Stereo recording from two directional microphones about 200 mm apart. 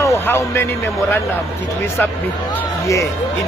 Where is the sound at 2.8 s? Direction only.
15° left (ahead or behind).